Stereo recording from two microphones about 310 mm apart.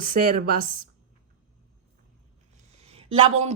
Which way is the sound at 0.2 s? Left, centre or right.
Right.